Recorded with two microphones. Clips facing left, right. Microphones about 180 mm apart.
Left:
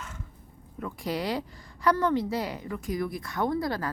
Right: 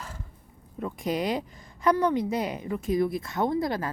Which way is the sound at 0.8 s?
20° right (ahead or behind).